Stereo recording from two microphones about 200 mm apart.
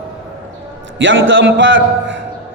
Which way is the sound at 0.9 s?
70° right (ahead or behind).